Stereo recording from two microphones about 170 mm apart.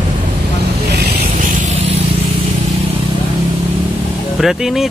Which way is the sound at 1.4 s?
50° right (ahead or behind).